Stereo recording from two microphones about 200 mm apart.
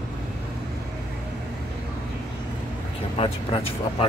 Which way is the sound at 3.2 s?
30° left (ahead or behind).